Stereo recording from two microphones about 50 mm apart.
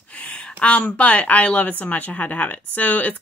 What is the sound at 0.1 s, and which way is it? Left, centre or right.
Speech, left.